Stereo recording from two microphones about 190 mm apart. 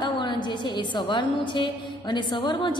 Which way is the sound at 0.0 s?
25° left (ahead or behind).